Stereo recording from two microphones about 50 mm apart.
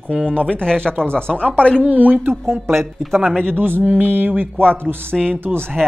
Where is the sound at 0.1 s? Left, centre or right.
Centre.